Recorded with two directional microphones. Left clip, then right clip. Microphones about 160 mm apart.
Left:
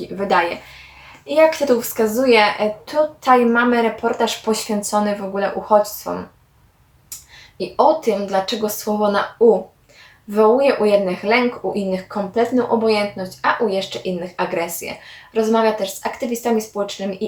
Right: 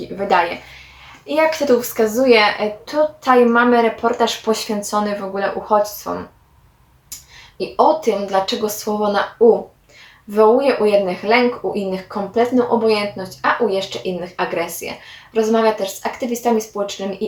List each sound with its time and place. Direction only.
0.3 s a woman's voice: 10° left (ahead or behind)
7.6 s speech: centre (ahead or behind)
10.2 s speech: centre (ahead or behind)